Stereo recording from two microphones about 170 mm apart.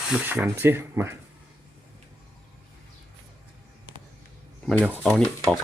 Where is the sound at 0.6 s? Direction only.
15° right (ahead or behind).